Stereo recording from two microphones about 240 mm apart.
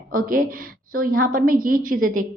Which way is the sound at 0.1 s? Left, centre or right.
Right.